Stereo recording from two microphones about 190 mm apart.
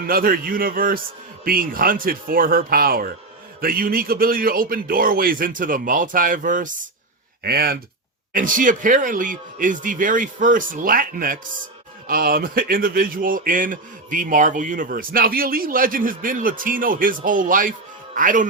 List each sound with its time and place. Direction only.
0.0 s a man's voice: 50° right (ahead or behind)
7.4 s a man's voice: 55° right (ahead or behind)